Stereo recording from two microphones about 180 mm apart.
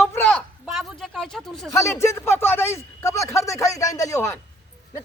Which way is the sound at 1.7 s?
15° left (ahead or behind).